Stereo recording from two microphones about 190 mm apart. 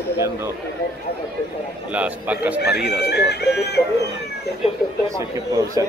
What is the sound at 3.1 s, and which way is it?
Speech, 60° left (ahead or behind).